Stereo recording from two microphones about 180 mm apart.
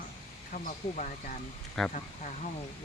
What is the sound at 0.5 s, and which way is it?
Speech, 45° left (ahead or behind).